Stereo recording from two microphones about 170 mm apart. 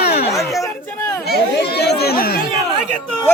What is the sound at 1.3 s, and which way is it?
Chatter, 75° left (ahead or behind).